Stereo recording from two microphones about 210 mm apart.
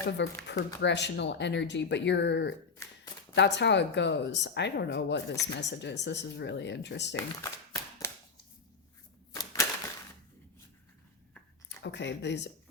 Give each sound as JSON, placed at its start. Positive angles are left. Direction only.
{"t": 0.2, "sound": "speech", "side_deg": 55}
{"t": 8.0, "sound": "a sound", "side_deg": 10}
{"t": 9.3, "sound": "typewriter", "side_deg": 15}
{"t": 11.8, "sound": "speech", "side_deg": 55}